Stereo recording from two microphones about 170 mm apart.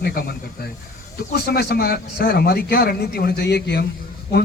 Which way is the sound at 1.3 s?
70° left (ahead or behind).